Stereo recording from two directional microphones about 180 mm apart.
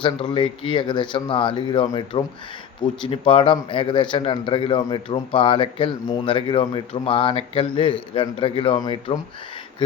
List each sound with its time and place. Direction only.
0.0 s speech: 25° left (ahead or behind)